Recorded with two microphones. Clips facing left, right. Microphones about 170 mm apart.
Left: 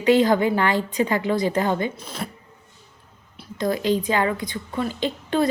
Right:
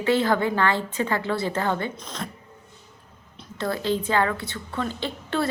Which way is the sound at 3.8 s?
15° left (ahead or behind).